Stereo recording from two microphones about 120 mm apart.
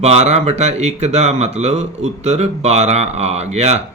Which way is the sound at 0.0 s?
65° right (ahead or behind).